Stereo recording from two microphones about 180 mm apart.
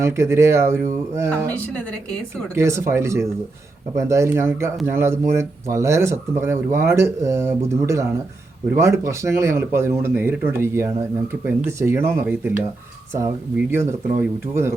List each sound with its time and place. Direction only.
0.0 s speech: 15° right (ahead or behind)
2.6 s speech: 15° right (ahead or behind)